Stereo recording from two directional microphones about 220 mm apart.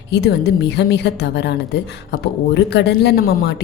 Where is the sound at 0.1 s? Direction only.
50° left (ahead or behind).